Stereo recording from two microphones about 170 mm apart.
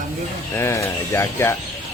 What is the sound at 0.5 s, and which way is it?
Speech, 15° left (ahead or behind).